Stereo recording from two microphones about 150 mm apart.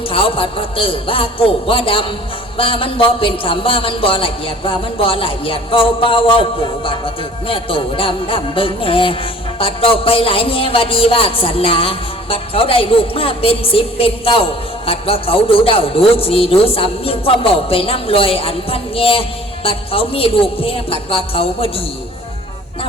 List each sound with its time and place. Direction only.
0.1 s a man's voice: 40° left (ahead or behind)